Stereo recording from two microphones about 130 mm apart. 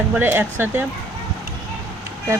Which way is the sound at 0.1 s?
15° right (ahead or behind).